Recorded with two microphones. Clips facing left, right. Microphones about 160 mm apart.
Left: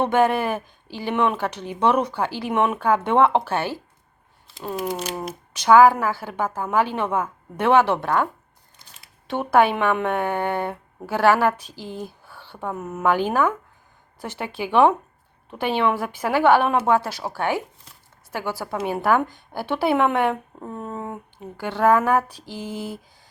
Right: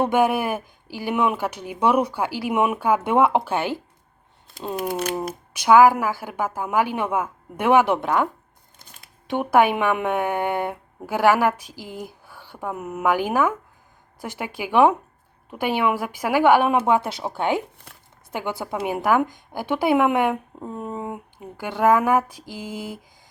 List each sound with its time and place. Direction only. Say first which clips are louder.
0.0 s a woman's voice: even; 10° right (ahead or behind)